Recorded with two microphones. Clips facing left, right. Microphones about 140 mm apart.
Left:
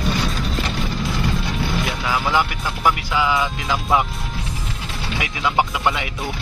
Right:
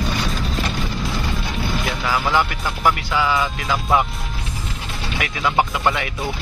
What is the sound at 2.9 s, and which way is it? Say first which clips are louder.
Speech: even; 15° left (ahead or behind).